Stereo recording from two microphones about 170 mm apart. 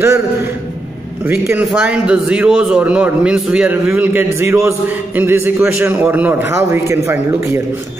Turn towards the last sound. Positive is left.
turn(degrees=-15)  # may be behind; listen again after turning